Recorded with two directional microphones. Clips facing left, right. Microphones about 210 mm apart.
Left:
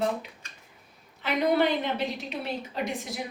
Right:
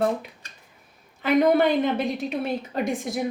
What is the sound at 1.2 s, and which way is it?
Speech, 50° right (ahead or behind).